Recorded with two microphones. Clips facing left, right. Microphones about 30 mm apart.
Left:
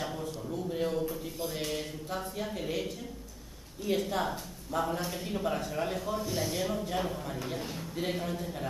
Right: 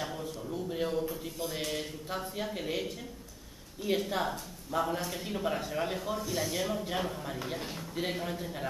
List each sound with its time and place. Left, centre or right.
0.0 s a sound: centre
2.1 s a man's voice: centre
6.1 s a man's voice: centre